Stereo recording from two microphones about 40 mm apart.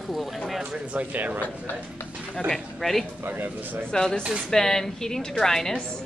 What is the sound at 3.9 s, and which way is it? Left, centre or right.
A woman's voice, centre.